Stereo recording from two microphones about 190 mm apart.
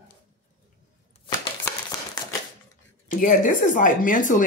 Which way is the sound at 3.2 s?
45° left (ahead or behind).